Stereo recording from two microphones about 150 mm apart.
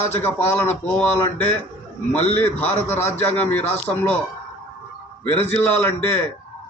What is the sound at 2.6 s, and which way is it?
A man's voice, 15° left (ahead or behind).